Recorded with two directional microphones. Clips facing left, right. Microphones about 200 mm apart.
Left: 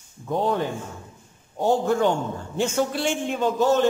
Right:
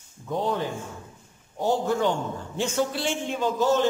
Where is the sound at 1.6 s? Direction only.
55° left (ahead or behind).